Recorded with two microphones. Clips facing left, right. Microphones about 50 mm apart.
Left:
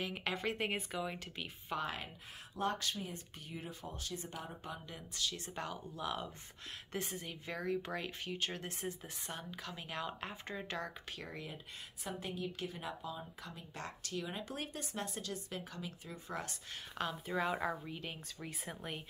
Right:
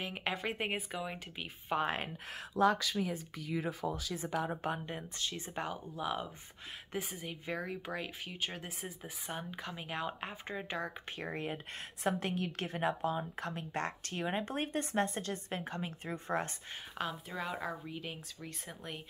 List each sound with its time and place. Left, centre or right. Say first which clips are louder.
0.0 s speech: right 1 dB; centre
2.3 s speech: right 8 dB; right
4.4 s speech: right 10 dB; right
4.8 s speech: right 2 dB; right; by 10.9 s centre
11.1 s speech: right 7 dB; right
17.0 s a woman's voice: left 2 dB; centre